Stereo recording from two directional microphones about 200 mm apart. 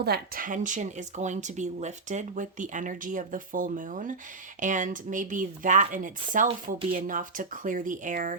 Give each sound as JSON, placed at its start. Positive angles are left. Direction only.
{"t": 0.0, "sound": "speech", "side_deg": -50}